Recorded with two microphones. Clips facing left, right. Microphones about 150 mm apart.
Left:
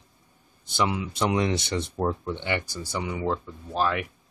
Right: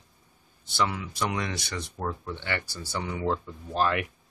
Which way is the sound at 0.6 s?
20° left (ahead or behind).